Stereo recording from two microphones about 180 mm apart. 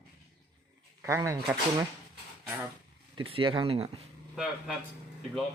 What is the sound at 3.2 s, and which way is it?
Speech, 30° right (ahead or behind).